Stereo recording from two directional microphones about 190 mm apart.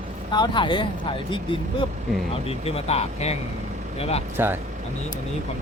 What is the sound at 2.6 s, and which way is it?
Speech, 30° left (ahead or behind).